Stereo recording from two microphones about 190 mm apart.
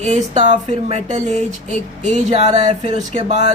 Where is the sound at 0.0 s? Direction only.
40° right (ahead or behind).